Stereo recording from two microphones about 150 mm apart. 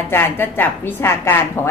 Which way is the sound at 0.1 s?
15° left (ahead or behind).